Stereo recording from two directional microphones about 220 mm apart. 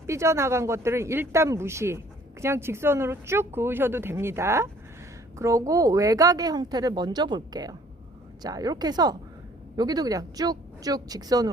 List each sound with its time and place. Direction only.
0.1 s a woman's voice: 10° right (ahead or behind)